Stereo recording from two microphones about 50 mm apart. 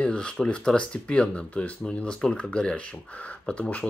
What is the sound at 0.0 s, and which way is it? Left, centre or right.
Speech, left.